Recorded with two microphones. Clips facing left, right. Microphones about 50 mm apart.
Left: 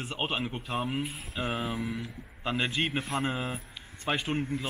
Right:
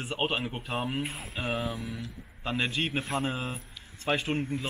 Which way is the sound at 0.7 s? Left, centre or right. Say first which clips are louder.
Even; centre.